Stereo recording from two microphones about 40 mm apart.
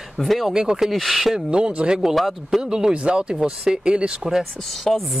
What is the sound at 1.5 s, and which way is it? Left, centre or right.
Speech, right.